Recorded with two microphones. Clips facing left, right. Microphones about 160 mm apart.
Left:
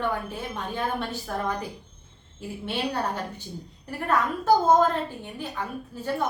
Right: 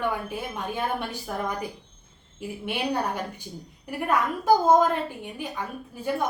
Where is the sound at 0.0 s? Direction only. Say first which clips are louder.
Even; 10° right (ahead or behind).